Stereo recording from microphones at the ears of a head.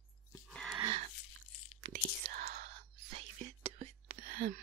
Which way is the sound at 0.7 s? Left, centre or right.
Right.